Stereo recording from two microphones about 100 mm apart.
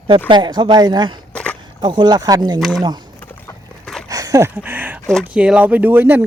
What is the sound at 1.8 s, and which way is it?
Speech, 50° right (ahead or behind).